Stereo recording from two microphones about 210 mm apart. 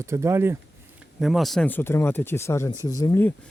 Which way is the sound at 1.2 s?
Centre (ahead or behind).